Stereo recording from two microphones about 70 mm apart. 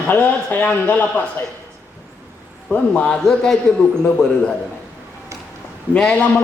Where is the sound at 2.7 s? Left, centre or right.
Left.